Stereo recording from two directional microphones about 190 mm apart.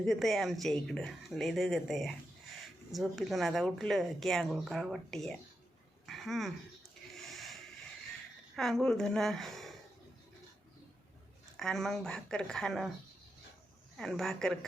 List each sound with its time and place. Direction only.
0.0 s speech: centre (ahead or behind)
7.3 s a sound: centre (ahead or behind)
8.5 s speech: centre (ahead or behind)
11.5 s speech: 5° left (ahead or behind)
13.9 s speech: centre (ahead or behind)